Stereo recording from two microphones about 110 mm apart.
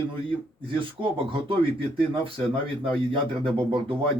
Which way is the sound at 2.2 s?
55° right (ahead or behind).